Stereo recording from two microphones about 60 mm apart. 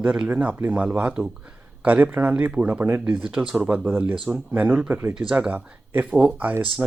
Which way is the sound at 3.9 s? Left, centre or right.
Right.